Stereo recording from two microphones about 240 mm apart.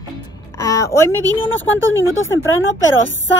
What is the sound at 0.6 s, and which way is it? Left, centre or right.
Speech, centre.